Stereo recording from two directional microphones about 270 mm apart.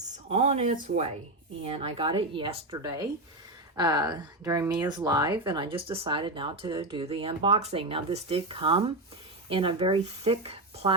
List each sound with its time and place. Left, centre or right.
0.3 s speech: right